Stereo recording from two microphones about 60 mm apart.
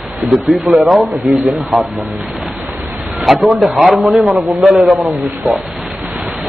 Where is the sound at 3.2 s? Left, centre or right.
Centre.